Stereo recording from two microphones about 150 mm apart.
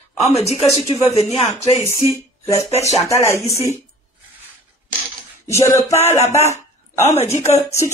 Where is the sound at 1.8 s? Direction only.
20° left (ahead or behind).